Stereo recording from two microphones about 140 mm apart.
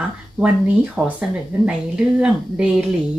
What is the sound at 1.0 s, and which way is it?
Speech, 15° right (ahead or behind).